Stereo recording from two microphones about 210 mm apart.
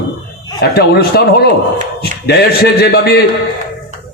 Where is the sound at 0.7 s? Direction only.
50° left (ahead or behind).